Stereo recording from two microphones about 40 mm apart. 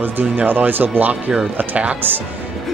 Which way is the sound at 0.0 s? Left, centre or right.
Right.